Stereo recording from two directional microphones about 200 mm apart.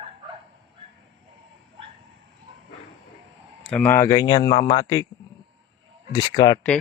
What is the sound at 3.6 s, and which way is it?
Speech, 5° left (ahead or behind).